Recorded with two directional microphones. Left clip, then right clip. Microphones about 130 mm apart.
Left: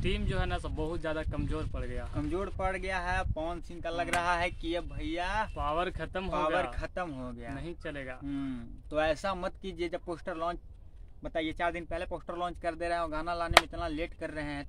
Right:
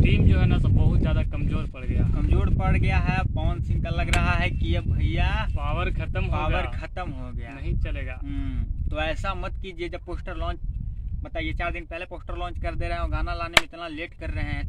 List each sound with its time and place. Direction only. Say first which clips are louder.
0.1 s speech: right 7 dB; 10° left (ahead or behind)
2.1 s speech: even; 30° left (ahead or behind)
3.6 s speech: right 2 dB; 55° left (ahead or behind)
5.6 s speech: right 1 dB; 10° left (ahead or behind)
7.6 s speech: right 3 dB; 10° left (ahead or behind)
8.9 s speech: right 1 dB; 55° left (ahead or behind)
10.2 s speech: even; 40° left (ahead or behind)